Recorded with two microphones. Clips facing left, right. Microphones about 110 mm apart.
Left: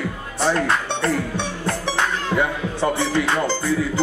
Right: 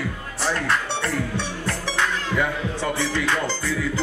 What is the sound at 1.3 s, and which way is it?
Music, 25° left (ahead or behind).